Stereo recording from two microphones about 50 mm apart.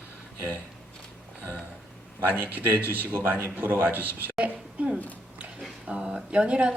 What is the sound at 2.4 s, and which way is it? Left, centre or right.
A man's voice, right.